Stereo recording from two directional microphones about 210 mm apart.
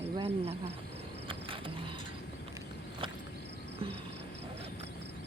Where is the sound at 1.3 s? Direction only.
25° right (ahead or behind).